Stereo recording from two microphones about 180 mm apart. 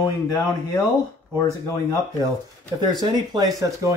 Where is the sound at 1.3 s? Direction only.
20° left (ahead or behind).